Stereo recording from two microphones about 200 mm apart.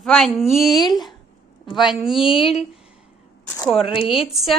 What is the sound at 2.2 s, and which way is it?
Speech, 25° left (ahead or behind).